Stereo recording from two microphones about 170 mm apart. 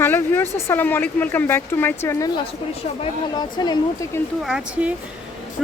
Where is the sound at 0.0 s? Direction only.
10° left (ahead or behind).